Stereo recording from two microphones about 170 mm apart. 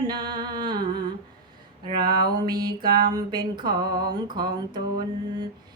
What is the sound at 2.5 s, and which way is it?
Music, 60° right (ahead or behind).